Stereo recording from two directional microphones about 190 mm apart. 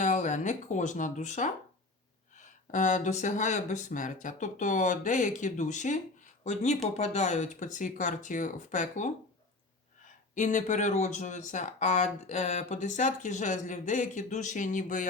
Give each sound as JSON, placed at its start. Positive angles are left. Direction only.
{"t": 0.0, "sound": "speech", "side_deg": 40}
{"t": 10.3, "sound": "speech", "side_deg": 40}